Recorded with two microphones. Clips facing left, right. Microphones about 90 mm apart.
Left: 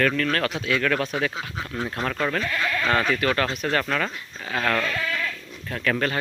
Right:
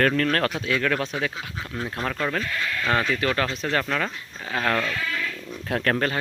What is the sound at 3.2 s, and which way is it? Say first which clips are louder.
Speech: left 1 dB; 20° right (ahead or behind).